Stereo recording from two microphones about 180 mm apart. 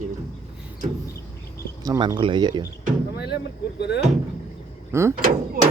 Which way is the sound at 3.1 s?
65° left (ahead or behind).